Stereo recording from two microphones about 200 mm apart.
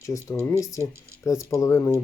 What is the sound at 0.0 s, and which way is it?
Speech, 15° left (ahead or behind).